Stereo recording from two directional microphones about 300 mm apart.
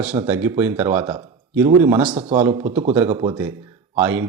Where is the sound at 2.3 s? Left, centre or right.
Centre.